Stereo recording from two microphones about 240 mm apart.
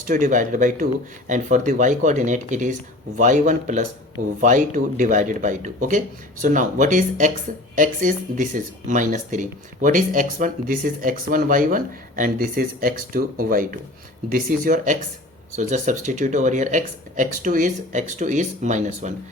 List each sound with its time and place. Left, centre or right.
0.0 s speech: right